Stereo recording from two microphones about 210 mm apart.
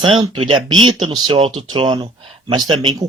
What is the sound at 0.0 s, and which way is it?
Speech, 25° right (ahead or behind).